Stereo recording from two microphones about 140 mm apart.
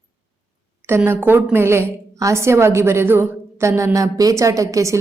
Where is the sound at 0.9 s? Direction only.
15° right (ahead or behind).